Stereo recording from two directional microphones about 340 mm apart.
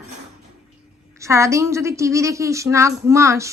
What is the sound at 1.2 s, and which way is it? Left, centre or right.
Speech, centre.